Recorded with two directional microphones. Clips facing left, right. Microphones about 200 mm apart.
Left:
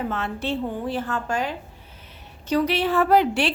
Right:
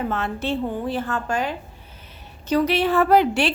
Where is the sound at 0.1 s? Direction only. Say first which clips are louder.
Right 2 dB; 50° right (ahead or behind).